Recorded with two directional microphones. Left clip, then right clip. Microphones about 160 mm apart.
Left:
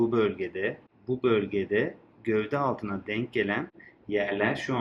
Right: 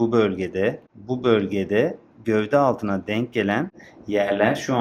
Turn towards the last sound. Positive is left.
turn(degrees=-60)  # may be behind; listen again after turning